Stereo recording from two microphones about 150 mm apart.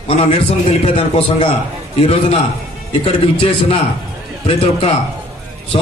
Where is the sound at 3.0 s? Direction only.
40° left (ahead or behind).